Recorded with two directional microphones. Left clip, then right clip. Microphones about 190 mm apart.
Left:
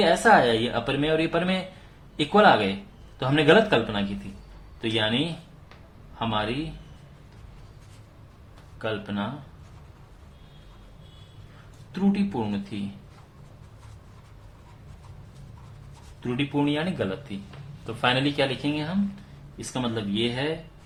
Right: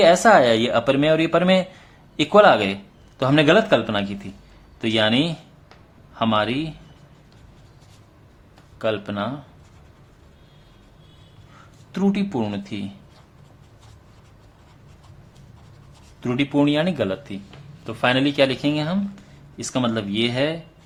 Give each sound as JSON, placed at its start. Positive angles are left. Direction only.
{"t": 0.0, "sound": "speech", "side_deg": -40}
{"t": 6.1, "sound": "speech", "side_deg": -45}
{"t": 8.8, "sound": "speech", "side_deg": -40}
{"t": 11.9, "sound": "speech", "side_deg": -45}
{"t": 16.2, "sound": "speech", "side_deg": -45}